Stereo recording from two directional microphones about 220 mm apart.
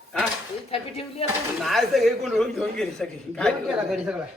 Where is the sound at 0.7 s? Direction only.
25° left (ahead or behind).